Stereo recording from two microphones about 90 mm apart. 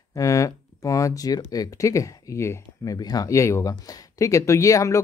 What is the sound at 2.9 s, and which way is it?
Speech, 45° left (ahead or behind).